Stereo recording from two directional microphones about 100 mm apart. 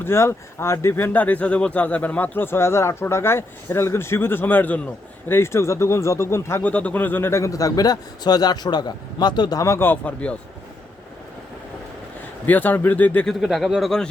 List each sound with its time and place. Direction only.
0.0 s speech: 25° left (ahead or behind)
12.5 s speech: 20° left (ahead or behind)
13.2 s speech: centre (ahead or behind)